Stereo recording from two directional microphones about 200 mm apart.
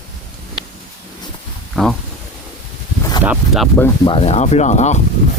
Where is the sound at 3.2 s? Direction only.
5° right (ahead or behind).